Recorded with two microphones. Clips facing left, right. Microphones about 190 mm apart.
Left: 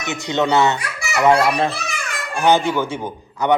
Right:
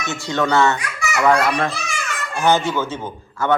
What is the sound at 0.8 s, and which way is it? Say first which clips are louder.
Speech: left 1 dB; 30° left (ahead or behind).